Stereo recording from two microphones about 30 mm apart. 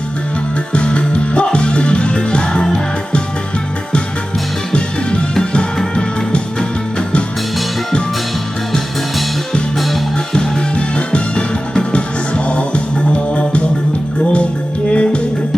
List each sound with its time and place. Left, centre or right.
0.7 s music: left
4.7 s music: left
10.8 s music: left
11.7 s music: left
11.9 s music: left
14.8 s music: left